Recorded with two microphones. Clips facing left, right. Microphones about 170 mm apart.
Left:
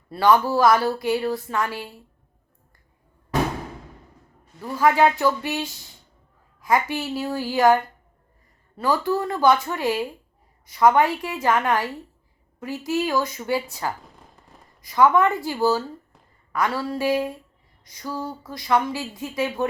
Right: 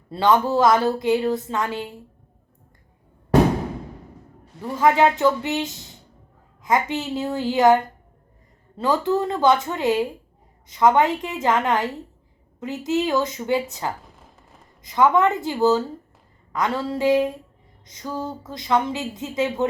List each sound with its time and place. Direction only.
0.1 s a woman's voice: 20° right (ahead or behind)
4.8 s a woman's voice: 20° right (ahead or behind)